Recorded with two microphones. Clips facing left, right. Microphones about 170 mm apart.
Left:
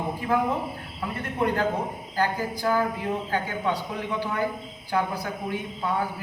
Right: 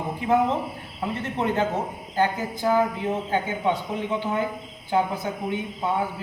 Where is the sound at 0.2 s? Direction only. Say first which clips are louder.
Right 4 dB; 20° right (ahead or behind).